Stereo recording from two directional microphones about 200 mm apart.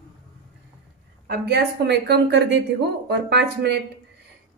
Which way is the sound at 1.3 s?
55° right (ahead or behind).